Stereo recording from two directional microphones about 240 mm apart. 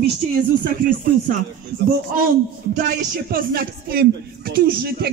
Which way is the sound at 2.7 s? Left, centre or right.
Right.